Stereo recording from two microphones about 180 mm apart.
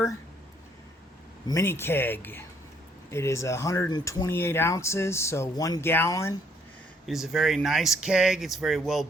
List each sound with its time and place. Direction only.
1.5 s speech: 15° left (ahead or behind)
7.1 s speech: centre (ahead or behind)